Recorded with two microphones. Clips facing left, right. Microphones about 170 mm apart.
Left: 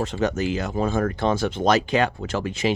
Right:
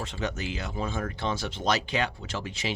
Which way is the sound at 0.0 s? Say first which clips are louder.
Left 9 dB; 45° left (ahead or behind).